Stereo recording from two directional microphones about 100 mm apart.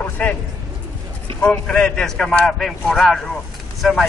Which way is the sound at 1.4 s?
15° left (ahead or behind).